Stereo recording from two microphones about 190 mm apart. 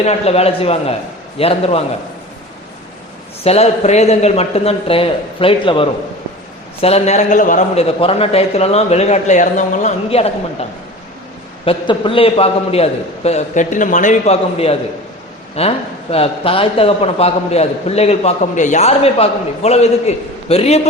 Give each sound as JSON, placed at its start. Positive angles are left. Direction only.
{"t": 0.0, "sound": "a man's voice", "side_deg": 35}
{"t": 3.4, "sound": "a man's voice", "side_deg": 35}
{"t": 7.9, "sound": "a man's voice", "side_deg": 30}